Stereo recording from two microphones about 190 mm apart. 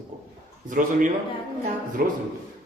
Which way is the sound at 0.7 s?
45° right (ahead or behind).